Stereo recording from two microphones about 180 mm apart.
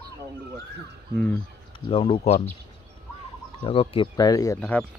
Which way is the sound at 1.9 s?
30° left (ahead or behind).